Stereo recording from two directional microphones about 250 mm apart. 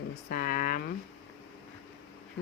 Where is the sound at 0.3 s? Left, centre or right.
Left.